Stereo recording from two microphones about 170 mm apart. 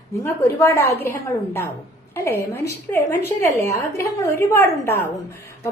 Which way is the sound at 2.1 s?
15° left (ahead or behind).